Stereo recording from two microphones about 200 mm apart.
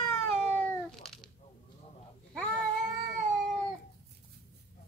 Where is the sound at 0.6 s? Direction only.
Centre (ahead or behind).